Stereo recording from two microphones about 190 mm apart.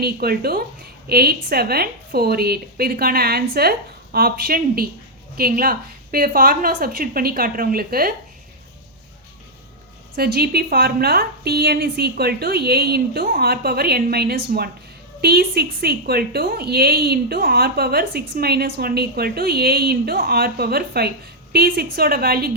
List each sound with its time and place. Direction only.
0.0 s a woman's voice: 55° right (ahead or behind)
10.2 s a woman's voice: 55° right (ahead or behind)